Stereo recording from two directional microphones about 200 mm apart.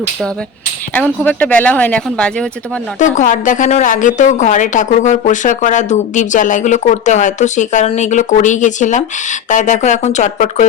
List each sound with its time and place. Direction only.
0.9 s speech: 5° left (ahead or behind)
3.0 s a woman's voice: 40° left (ahead or behind)